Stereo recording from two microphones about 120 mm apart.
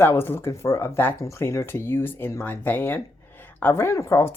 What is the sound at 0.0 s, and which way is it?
Speech, 20° left (ahead or behind).